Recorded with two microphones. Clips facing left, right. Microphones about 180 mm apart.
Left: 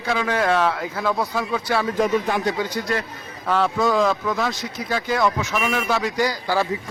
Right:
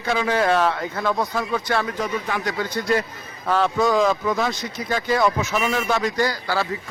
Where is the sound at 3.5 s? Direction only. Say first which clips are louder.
Even; centre (ahead or behind).